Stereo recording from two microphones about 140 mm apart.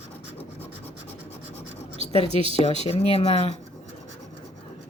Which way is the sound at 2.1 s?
45° left (ahead or behind).